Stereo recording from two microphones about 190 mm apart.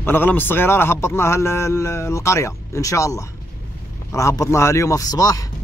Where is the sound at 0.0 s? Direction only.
10° left (ahead or behind).